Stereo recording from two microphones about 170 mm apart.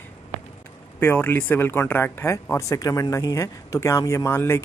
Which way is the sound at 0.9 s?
10° left (ahead or behind).